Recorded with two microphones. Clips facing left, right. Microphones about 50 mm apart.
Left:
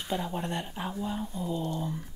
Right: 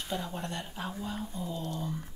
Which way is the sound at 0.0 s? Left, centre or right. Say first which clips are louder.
Left 4 dB; centre.